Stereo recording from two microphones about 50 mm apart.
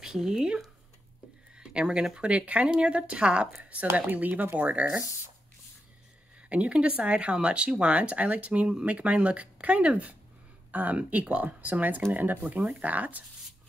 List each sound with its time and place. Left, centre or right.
0.0 s speech: centre
1.5 s a sound: centre
2.0 s speech: right
3.9 s speech: right
6.5 s speech: right